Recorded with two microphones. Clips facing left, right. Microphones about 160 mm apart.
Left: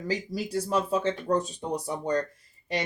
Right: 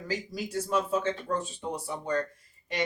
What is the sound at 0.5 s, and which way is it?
Speech, 35° left (ahead or behind).